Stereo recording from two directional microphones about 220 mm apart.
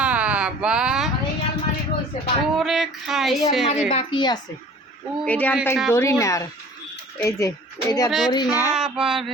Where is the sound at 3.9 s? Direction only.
25° left (ahead or behind).